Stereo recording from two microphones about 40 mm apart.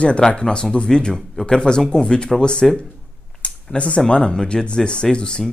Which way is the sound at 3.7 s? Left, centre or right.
Left.